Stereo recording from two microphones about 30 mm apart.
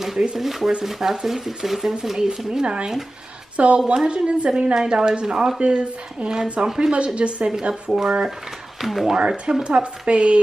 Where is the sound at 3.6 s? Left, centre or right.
Right.